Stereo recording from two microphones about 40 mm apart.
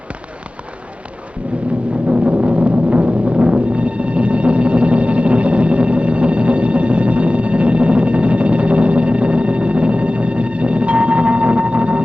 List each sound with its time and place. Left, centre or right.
2.0 s timpani: right